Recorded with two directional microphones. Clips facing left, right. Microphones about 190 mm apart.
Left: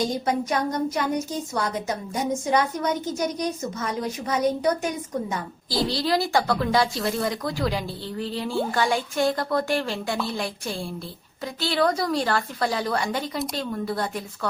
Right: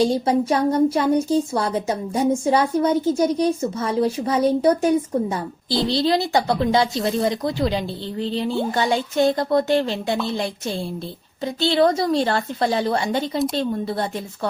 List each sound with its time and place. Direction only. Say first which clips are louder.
0.0 s a woman's voice: right 6 dB; 30° right (ahead or behind)